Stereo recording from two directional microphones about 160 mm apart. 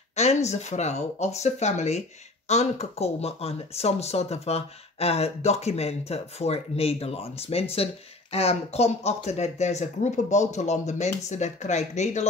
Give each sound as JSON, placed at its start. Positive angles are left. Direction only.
{"t": 0.1, "sound": "speech", "side_deg": 45}